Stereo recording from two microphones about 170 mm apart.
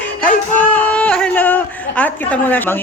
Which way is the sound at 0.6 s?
10° left (ahead or behind).